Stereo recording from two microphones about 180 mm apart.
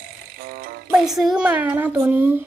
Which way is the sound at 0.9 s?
Centre (ahead or behind).